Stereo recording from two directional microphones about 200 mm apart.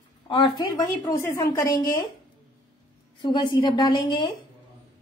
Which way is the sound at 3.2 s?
20° left (ahead or behind).